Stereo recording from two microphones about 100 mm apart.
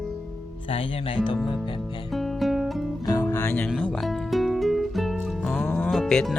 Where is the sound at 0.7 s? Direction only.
65° left (ahead or behind).